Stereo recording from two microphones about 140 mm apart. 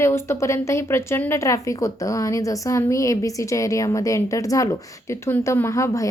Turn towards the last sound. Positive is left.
turn(degrees=20)  # may be behind; listen again after turning